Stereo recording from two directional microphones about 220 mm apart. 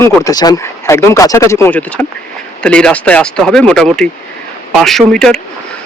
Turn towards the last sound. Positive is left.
turn(degrees=5)  # may be behind; listen again after turning